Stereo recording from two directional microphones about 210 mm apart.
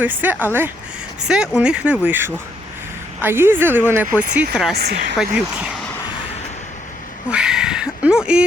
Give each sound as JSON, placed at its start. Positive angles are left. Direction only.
{"t": 0.0, "sound": "speech", "side_deg": -10}
{"t": 4.7, "sound": "speech", "side_deg": -50}
{"t": 5.1, "sound": "speech", "side_deg": -5}
{"t": 7.3, "sound": "a sound", "side_deg": -5}